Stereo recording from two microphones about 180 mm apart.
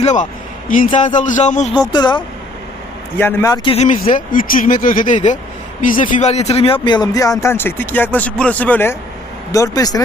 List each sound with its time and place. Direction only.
0.0 s speech: 40° left (ahead or behind)
1.7 s speech: 25° left (ahead or behind)
3.2 s speech: 10° left (ahead or behind)
3.5 s speech: 30° left (ahead or behind)
3.8 s speech: 45° left (ahead or behind); by 10.0 s 20° left (ahead or behind)